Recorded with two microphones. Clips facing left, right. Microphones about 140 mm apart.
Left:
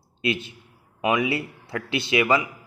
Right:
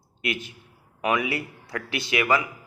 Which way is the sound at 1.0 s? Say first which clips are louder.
Left 2 dB; 20° left (ahead or behind).